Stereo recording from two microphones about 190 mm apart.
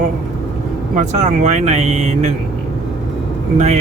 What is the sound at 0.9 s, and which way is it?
Speech, 40° right (ahead or behind).